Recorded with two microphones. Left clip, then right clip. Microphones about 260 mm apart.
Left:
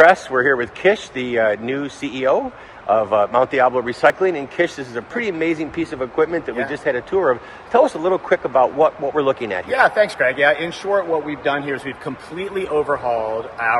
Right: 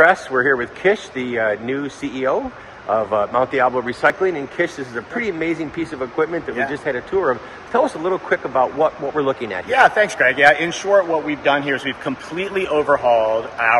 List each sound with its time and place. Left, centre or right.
0.0 s speech: left
9.7 s speech: centre
12.7 s speech: centre